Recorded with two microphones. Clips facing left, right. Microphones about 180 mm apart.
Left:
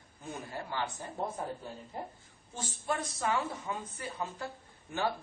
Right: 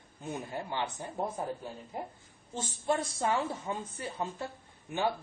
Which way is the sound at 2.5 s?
25° right (ahead or behind).